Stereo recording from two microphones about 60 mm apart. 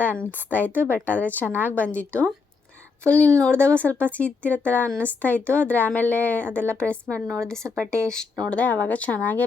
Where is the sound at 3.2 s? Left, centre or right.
Right.